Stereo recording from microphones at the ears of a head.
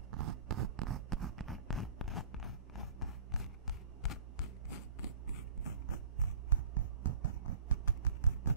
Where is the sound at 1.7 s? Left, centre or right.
Left.